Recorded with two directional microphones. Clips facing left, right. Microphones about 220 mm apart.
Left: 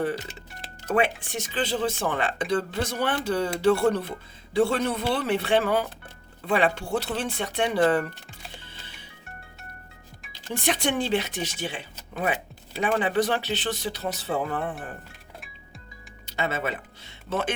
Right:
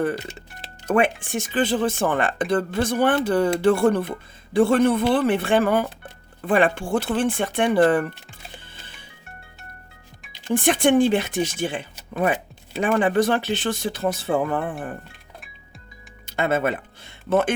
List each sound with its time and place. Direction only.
0.9 s speech: 50° right (ahead or behind)
8.6 s music: 50° right (ahead or behind)
10.5 s speech: 50° right (ahead or behind)
16.2 s speech: 50° right (ahead or behind)